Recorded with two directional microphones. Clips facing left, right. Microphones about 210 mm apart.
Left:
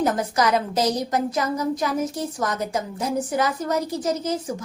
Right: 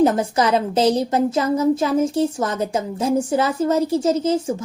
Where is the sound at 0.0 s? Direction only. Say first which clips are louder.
Right 5 dB; 25° right (ahead or behind).